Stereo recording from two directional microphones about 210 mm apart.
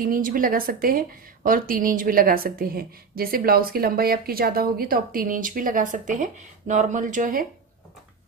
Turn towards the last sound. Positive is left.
turn(degrees=-40)  # may be behind; listen again after turning